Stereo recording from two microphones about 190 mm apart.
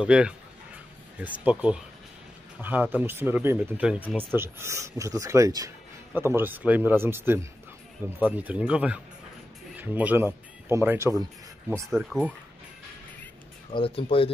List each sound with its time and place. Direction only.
0.0 s speech: 5° right (ahead or behind)
11.7 s speech: centre (ahead or behind)
13.7 s speech: 30° left (ahead or behind)